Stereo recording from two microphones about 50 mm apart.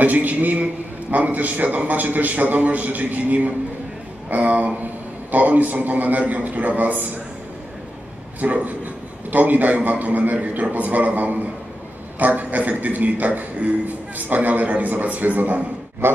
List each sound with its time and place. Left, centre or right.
0.0 s a man's voice: right
8.4 s a man's voice: right
16.0 s a sound: right